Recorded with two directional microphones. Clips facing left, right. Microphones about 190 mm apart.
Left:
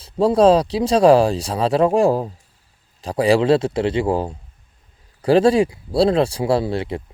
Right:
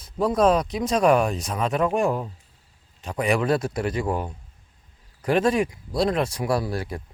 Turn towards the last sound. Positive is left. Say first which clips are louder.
# left 6 dB
turn(degrees=25)  # may be behind; listen again after turning